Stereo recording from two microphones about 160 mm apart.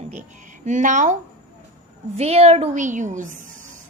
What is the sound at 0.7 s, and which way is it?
A woman's voice, 50° right (ahead or behind).